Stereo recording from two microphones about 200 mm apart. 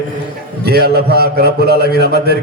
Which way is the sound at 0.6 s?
50° right (ahead or behind).